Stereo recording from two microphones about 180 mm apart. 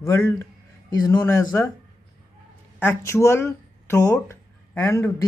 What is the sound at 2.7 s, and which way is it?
Speech, 15° left (ahead or behind).